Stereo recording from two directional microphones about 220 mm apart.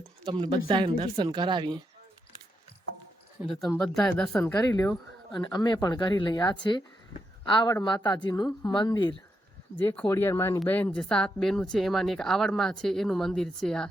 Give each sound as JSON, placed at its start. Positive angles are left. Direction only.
{"t": 0.3, "sound": "speech", "side_deg": -20}
{"t": 3.4, "sound": "speech", "side_deg": 0}
{"t": 4.5, "sound": "speech", "side_deg": 15}
{"t": 9.7, "sound": "speech", "side_deg": 5}